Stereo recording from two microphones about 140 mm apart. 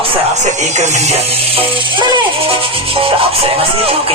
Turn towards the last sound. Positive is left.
turn(degrees=-45)  # may be behind; listen again after turning